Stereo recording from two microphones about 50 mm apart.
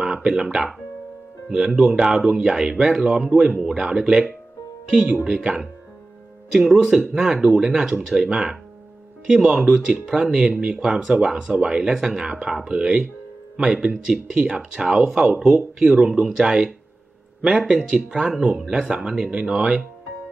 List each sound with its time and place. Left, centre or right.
0.0 s speech: centre
18.1 s speech: centre
18.4 s speech: centre